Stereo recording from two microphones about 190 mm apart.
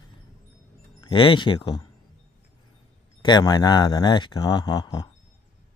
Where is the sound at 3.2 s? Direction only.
20° left (ahead or behind).